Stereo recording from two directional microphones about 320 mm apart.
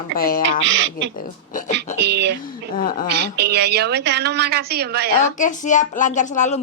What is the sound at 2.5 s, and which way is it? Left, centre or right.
Speech, left.